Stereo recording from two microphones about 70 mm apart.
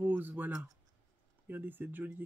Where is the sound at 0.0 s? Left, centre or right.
Right.